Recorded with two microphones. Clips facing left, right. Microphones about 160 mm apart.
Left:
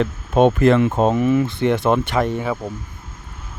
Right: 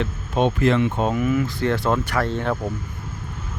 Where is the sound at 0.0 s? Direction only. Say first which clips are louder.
Left 6 dB; 50° left (ahead or behind); by 2.6 s 10° left (ahead or behind).